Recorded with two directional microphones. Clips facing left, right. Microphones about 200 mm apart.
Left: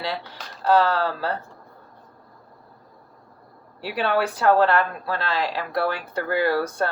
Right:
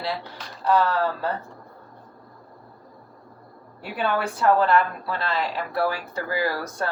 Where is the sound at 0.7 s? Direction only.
85° left.